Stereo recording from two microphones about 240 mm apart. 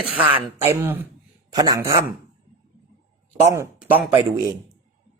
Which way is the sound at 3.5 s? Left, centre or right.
Centre.